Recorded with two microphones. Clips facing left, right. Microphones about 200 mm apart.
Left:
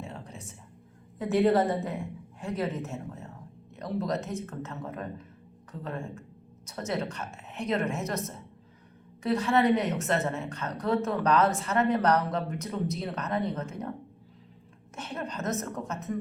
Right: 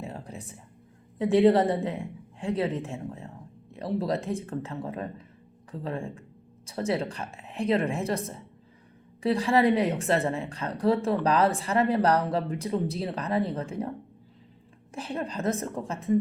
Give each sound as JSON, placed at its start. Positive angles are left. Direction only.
{"t": 0.0, "sound": "a sound", "side_deg": -35}
{"t": 1.2, "sound": "a woman's voice", "side_deg": -30}
{"t": 14.9, "sound": "a woman's voice", "side_deg": -35}